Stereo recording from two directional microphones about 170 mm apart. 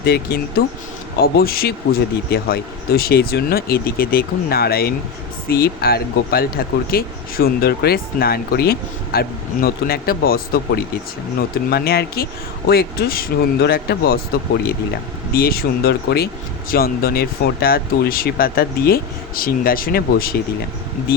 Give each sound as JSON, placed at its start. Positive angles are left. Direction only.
{"t": 0.0, "sound": "speech", "side_deg": 70}
{"t": 15.3, "sound": "speech", "side_deg": 65}